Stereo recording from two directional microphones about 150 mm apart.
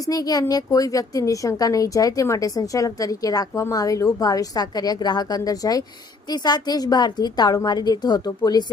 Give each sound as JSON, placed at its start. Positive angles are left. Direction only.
{"t": 0.0, "sound": "speech", "side_deg": 25}